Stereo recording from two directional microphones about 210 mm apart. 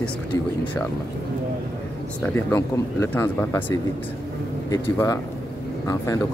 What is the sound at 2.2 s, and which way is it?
Speech, 10° left (ahead or behind).